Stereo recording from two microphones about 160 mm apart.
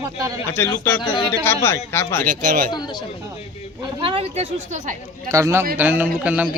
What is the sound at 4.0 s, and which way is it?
Speech, 35° right (ahead or behind).